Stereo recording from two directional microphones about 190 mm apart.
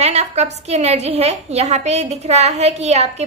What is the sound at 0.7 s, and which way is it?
A woman's voice, 35° right (ahead or behind).